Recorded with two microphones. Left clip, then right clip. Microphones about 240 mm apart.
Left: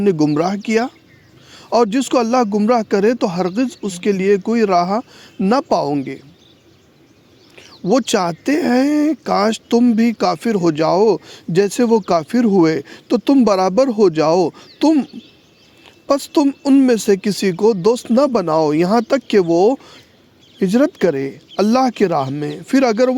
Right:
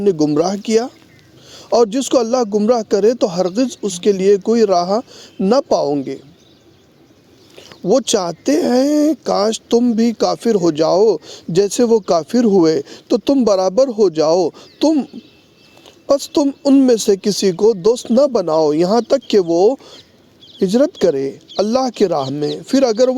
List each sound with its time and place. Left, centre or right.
0.0 s speech: left
7.5 s speech: left